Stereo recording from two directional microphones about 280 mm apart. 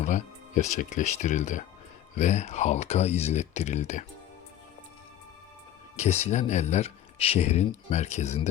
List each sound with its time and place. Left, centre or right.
0.0 s speech: left
6.0 s speech: left